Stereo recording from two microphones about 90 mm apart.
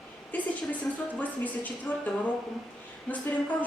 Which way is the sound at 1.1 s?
15° left (ahead or behind).